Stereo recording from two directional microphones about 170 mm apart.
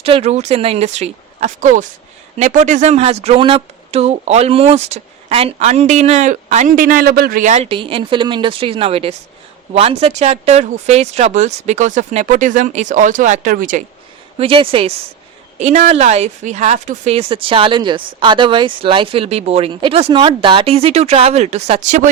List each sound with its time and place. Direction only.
0.0 s speech: 35° right (ahead or behind); by 13.8 s 50° right (ahead or behind)
14.3 s speech: 30° right (ahead or behind)